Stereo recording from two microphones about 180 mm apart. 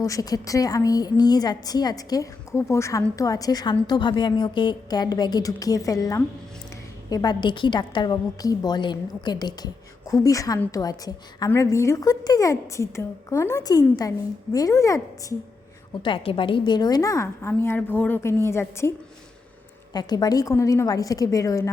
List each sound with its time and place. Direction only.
0.0 s a woman's voice: 20° left (ahead or behind)
16.0 s a woman's voice: 30° left (ahead or behind)